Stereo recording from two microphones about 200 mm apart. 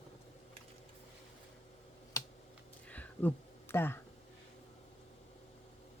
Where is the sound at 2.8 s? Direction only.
10° left (ahead or behind).